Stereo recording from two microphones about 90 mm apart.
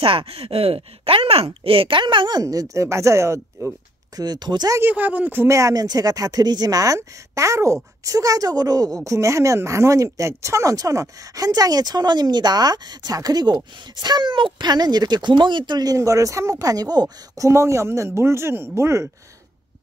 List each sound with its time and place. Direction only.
0.0 s speech: 90° right; by 2.4 s 60° right (ahead or behind)
2.4 s speech: 40° right (ahead or behind)
4.2 s speech: 50° right (ahead or behind)
4.7 s speech: 20° right (ahead or behind)
5.5 s speech: 40° right (ahead or behind)
17.5 s speech: 35° right (ahead or behind)